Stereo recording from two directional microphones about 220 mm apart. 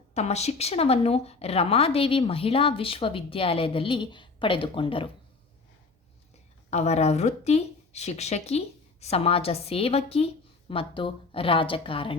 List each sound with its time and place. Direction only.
0.1 s a woman's voice: 30° left (ahead or behind)
6.7 s a woman's voice: 30° left (ahead or behind)